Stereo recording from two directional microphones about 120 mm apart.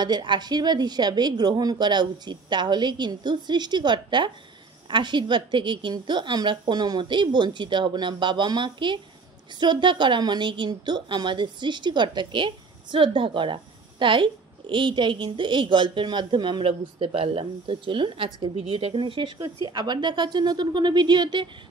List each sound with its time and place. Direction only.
0.0 s a woman's voice: 40° right (ahead or behind)